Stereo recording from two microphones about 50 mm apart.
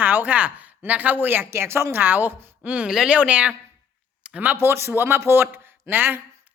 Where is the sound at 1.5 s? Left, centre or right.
Right.